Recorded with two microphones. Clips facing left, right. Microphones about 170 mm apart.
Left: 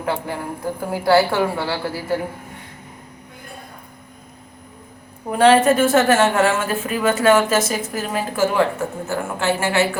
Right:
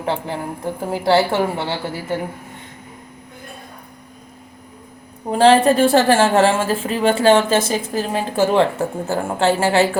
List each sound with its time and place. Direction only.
0.0 s a woman's voice: 25° right (ahead or behind)
5.3 s a woman's voice: 30° right (ahead or behind)